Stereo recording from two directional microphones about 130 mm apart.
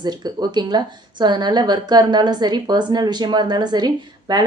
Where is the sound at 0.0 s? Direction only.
30° right (ahead or behind).